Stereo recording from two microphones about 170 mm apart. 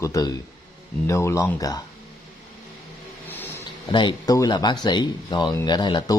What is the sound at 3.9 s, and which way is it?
Speech, 25° left (ahead or behind).